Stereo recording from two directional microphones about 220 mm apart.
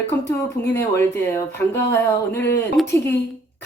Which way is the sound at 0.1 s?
10° left (ahead or behind).